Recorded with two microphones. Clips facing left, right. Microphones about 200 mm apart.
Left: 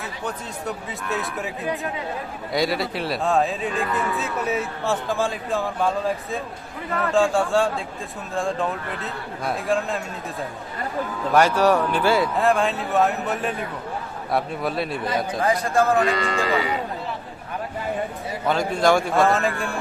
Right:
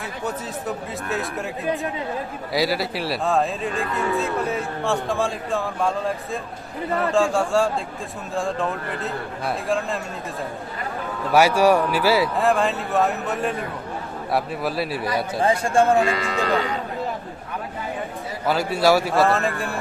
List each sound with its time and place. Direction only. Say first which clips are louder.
1.1 s speech: even; centre (ahead or behind)
11.3 s speech: right 2 dB; 10° right (ahead or behind)
15.4 s a man's voice: right 3 dB; 30° right (ahead or behind)
16.0 s speech: even; 5° right (ahead or behind)
18.4 s speech: right 1 dB; 5° right (ahead or behind)